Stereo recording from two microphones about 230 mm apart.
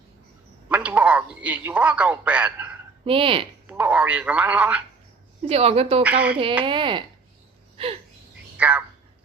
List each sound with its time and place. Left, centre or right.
0.7 s speech: centre
3.0 s speech: right
3.7 s speech: centre
5.5 s speech: right
6.0 s speech: centre
6.7 s speech: right
8.5 s a sound: centre